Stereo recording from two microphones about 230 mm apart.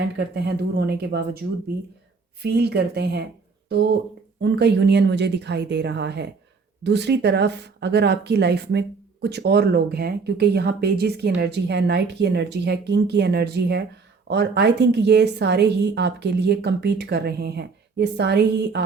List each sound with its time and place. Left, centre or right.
0.2 s speech: right
2.4 s speech: right